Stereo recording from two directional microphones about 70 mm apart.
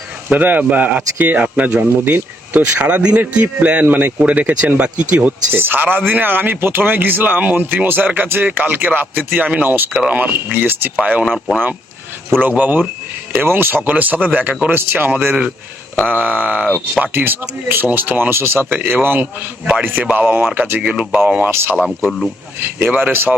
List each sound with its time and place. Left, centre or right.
0.3 s speech: right
5.5 s speech: right
11.3 s a man's voice: centre
12.4 s speech: right
21.5 s speech: right
21.8 s a man's voice: centre
22.8 s speech: right